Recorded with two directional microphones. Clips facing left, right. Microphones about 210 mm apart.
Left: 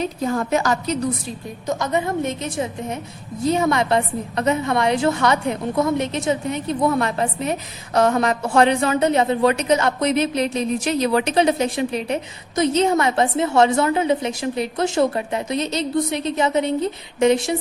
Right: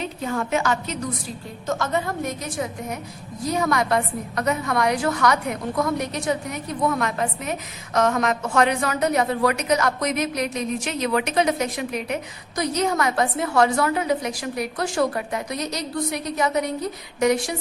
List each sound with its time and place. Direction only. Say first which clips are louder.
0.0 s a woman's voice: left 4 dB; 40° left (ahead or behind)
1.6 s a woman's voice: left 2 dB; 15° left (ahead or behind)